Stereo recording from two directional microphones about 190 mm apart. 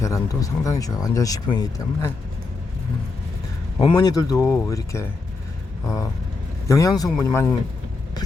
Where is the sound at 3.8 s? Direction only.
20° left (ahead or behind).